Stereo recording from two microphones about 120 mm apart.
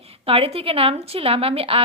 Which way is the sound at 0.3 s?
55° right (ahead or behind).